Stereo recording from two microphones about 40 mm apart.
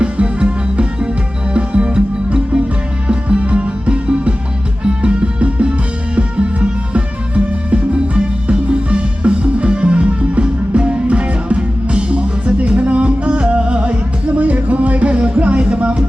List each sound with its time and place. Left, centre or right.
0.0 s music: right